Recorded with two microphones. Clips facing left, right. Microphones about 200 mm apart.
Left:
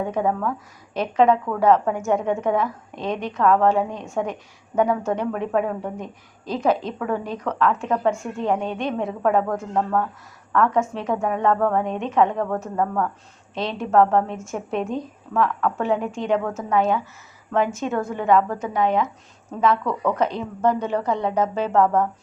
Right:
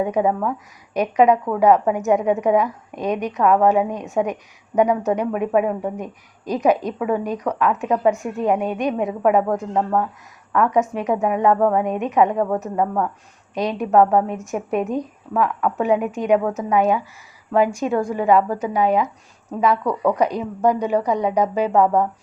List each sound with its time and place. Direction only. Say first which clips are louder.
0.0 s a woman's voice: right 3 dB; 15° right (ahead or behind)